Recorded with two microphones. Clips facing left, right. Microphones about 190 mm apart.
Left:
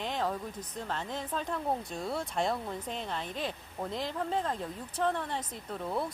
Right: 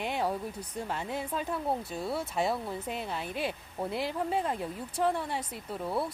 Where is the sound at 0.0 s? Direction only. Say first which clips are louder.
Right 2 dB; 10° right (ahead or behind).